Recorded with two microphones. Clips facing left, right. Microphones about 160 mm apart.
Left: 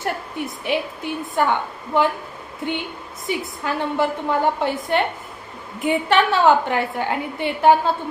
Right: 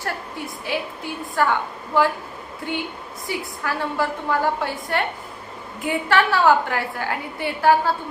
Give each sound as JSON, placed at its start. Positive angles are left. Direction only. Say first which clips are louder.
{"t": 0.0, "sound": "a woman's voice", "louder": "left 3 dB", "side_deg": 20}